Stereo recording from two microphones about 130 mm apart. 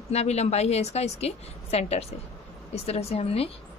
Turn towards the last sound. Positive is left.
turn(degrees=50)  # may be behind; listen again after turning